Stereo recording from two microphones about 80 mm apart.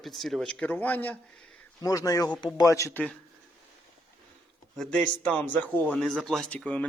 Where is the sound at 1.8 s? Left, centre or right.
Left.